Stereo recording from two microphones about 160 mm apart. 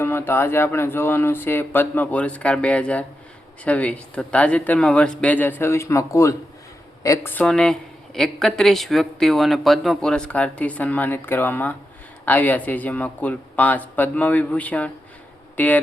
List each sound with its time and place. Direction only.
0.0 s speech: 15° left (ahead or behind)
7.3 s speech: 5° left (ahead or behind)